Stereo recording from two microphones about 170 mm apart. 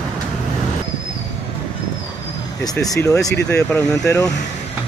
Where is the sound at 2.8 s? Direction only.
20° left (ahead or behind).